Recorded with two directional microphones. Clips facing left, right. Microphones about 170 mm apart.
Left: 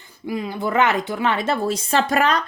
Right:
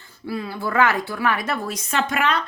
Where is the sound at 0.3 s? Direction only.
15° left (ahead or behind).